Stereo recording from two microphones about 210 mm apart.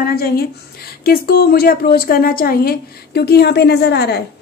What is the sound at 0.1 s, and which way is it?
A woman's voice, 45° left (ahead or behind).